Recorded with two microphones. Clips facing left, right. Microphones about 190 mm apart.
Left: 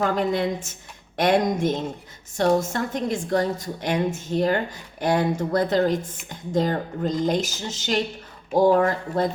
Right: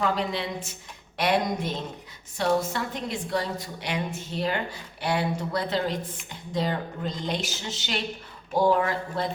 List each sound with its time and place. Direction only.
0.0 s a woman's voice: 45° left (ahead or behind)